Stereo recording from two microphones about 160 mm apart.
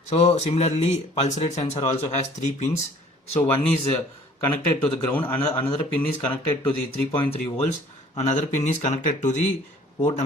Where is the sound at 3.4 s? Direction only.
10° left (ahead or behind).